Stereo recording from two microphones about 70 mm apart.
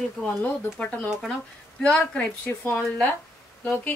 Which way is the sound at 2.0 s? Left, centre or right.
Left.